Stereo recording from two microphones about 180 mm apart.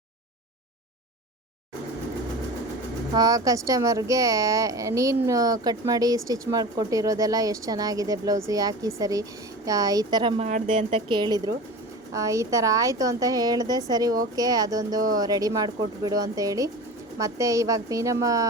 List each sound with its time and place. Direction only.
3.2 s a woman's voice: 20° right (ahead or behind)
10.4 s speech: 40° right (ahead or behind)
11.1 s a woman's voice: 25° right (ahead or behind)